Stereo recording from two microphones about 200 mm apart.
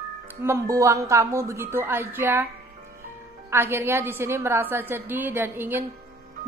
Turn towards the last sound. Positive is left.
turn(degrees=-10)  # may be behind; listen again after turning